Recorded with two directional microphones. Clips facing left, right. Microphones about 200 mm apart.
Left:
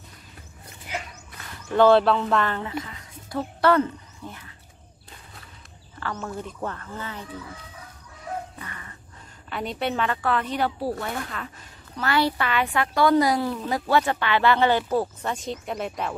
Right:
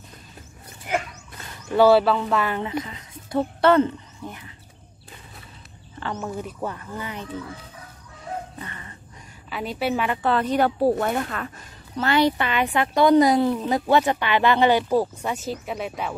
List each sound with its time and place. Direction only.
0.9 s a sound: 55° right (ahead or behind)
1.8 s speech: 5° right (ahead or behind)
6.1 s speech: 10° right (ahead or behind)
8.5 s a sound: 25° right (ahead or behind)
9.5 s a woman's voice: 5° right (ahead or behind)
10.2 s speech: 30° right (ahead or behind)
10.5 s a woman's voice: 50° right (ahead or behind)
12.0 s a woman's voice: 20° right (ahead or behind); by 16.2 s centre (ahead or behind)